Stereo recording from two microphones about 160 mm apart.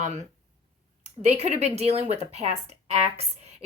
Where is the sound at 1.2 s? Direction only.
40° right (ahead or behind).